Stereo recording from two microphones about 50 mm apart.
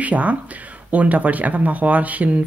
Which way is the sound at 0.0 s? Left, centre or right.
Right.